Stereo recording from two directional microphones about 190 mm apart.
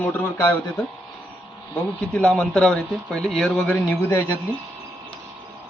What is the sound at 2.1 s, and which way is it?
A man's voice, 5° left (ahead or behind).